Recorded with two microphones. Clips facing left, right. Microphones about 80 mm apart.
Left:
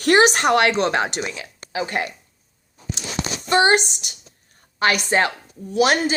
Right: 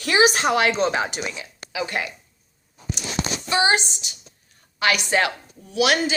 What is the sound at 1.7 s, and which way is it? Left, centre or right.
Speech, left.